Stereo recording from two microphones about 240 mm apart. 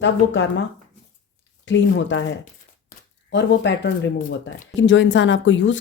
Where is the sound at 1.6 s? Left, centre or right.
Left.